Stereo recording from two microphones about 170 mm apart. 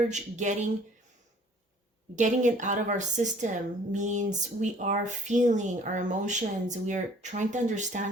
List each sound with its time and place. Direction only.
0.1 s speech: 45° right (ahead or behind)
2.1 s speech: 45° right (ahead or behind)